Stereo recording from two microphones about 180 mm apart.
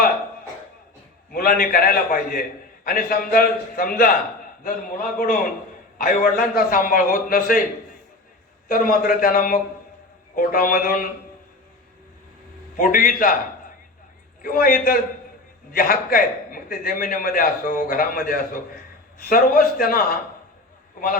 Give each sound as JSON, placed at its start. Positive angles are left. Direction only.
{"t": 1.3, "sound": "a man's voice", "side_deg": 55}
{"t": 8.7, "sound": "a man's voice", "side_deg": 50}
{"t": 12.7, "sound": "a man's voice", "side_deg": 50}
{"t": 14.4, "sound": "a man's voice", "side_deg": 50}